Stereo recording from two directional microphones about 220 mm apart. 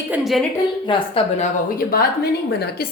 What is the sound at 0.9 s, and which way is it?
Speech, 25° left (ahead or behind).